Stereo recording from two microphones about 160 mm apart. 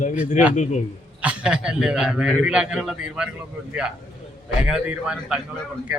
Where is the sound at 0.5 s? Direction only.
50° left (ahead or behind).